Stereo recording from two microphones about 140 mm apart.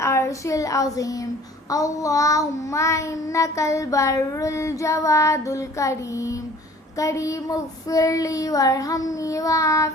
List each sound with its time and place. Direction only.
0.0 s child singing: 20° left (ahead or behind)